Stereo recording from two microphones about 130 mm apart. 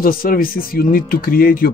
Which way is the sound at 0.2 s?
90° left.